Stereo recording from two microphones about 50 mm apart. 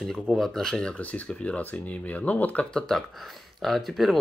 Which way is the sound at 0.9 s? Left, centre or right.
Left.